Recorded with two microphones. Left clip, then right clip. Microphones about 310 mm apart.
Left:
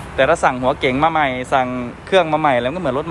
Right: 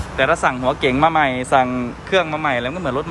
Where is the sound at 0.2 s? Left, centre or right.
Centre.